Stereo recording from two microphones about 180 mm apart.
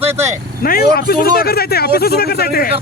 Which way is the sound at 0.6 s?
55° left (ahead or behind).